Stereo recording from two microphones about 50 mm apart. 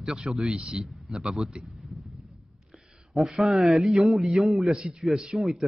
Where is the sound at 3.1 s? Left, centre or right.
Centre.